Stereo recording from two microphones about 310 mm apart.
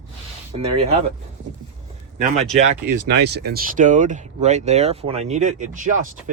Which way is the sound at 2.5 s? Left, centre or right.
Right.